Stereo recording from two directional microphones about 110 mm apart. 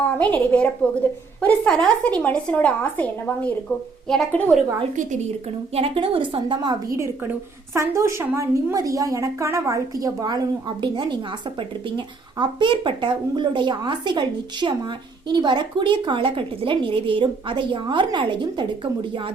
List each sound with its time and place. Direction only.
0.2 s a woman's voice: 15° left (ahead or behind)
5.7 s a woman's voice: 60° right (ahead or behind)
6.9 s a woman's voice: 25° right (ahead or behind); by 19.3 s 50° right (ahead or behind)